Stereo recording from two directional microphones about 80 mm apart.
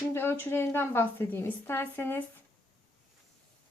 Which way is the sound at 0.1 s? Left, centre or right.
Left.